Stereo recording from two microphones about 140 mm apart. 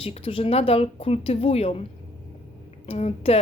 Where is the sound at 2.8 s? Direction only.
45° left (ahead or behind).